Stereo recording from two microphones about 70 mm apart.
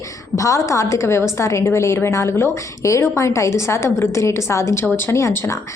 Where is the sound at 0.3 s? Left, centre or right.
Left.